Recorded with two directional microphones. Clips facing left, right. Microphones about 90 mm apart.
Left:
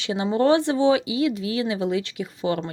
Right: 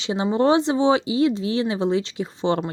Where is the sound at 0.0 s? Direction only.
25° right (ahead or behind).